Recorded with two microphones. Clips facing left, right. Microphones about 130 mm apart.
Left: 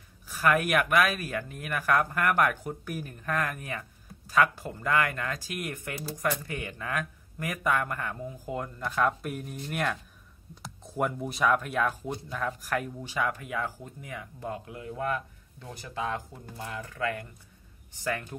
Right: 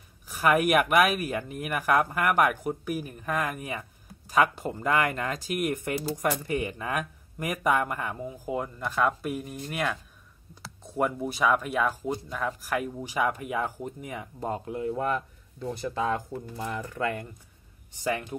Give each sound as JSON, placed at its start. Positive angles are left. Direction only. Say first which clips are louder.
{"t": 0.3, "sound": "speech", "louder": "right 3 dB", "side_deg": -15}
{"t": 17.0, "sound": "speech", "louder": "right 1 dB", "side_deg": -30}
{"t": 18.0, "sound": "speech", "louder": "right 3 dB", "side_deg": -15}